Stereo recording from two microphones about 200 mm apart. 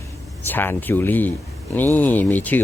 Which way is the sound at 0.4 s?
10° left (ahead or behind).